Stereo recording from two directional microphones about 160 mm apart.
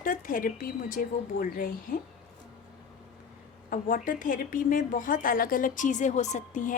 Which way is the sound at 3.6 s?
60° left (ahead or behind).